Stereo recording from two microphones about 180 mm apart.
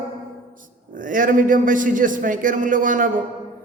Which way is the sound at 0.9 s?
50° right (ahead or behind).